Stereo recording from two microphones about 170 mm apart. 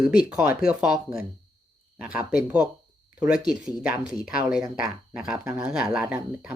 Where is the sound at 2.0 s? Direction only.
10° right (ahead or behind).